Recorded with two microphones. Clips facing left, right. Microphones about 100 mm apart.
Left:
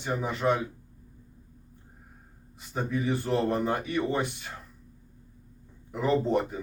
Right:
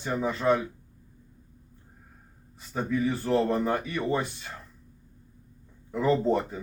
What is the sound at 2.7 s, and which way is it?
Speech, 20° left (ahead or behind).